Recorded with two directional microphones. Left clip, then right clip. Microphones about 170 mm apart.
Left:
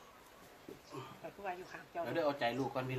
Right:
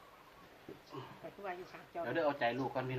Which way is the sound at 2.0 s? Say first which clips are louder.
Right 1 dB; 10° left (ahead or behind).